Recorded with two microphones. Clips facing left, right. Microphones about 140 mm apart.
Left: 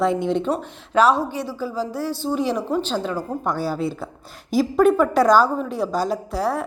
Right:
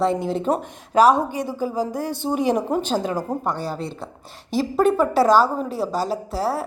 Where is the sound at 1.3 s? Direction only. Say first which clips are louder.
Right 2 dB; 45° right (ahead or behind).